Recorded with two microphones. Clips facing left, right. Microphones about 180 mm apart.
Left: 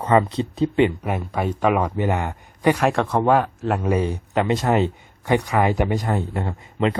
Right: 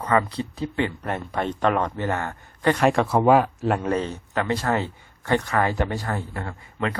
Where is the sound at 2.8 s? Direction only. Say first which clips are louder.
Even; centre (ahead or behind).